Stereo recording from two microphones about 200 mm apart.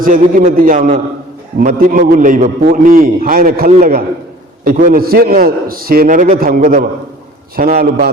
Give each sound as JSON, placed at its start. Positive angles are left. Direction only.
{"t": 0.0, "sound": "a man's voice", "side_deg": -40}